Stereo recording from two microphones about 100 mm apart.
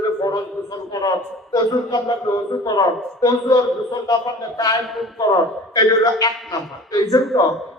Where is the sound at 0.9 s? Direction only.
40° left (ahead or behind).